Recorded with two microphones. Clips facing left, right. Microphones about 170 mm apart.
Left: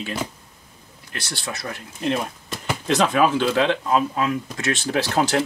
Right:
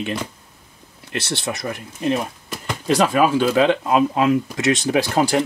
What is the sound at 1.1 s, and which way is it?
Speech, 25° right (ahead or behind).